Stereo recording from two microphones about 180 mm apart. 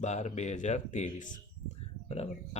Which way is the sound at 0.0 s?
40° left (ahead or behind).